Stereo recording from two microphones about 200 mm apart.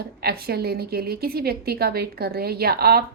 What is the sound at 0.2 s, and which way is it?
A woman's voice, 50° right (ahead or behind).